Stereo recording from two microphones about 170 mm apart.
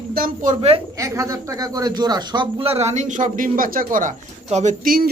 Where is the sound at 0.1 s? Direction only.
55° right (ahead or behind).